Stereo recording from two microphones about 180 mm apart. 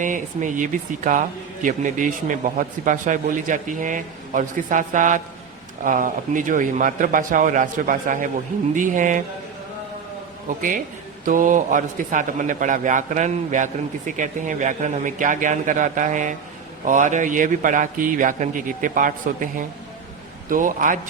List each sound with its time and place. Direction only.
0.0 s a man's voice: 45° right (ahead or behind)
10.5 s a man's voice: 45° right (ahead or behind)